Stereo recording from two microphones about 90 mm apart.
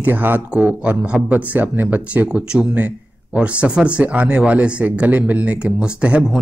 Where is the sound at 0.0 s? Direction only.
20° right (ahead or behind).